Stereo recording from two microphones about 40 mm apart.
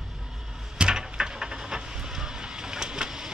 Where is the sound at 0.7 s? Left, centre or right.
Centre.